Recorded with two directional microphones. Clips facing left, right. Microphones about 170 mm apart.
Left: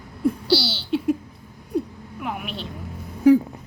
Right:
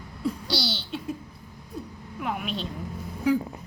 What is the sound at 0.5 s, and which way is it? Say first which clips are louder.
Speech: left 9 dB; 5° left (ahead or behind).